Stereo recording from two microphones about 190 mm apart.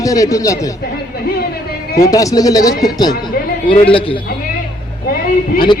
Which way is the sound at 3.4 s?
50° left (ahead or behind).